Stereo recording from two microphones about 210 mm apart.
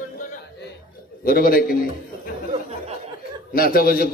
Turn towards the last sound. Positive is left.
turn(degrees=45)  # may be behind; listen again after turning